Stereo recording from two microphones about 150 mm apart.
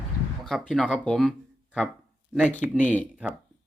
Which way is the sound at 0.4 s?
Centre (ahead or behind).